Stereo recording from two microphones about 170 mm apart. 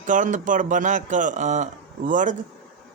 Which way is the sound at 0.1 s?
50° right (ahead or behind).